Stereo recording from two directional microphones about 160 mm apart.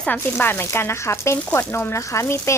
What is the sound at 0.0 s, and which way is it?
Speech, 10° left (ahead or behind).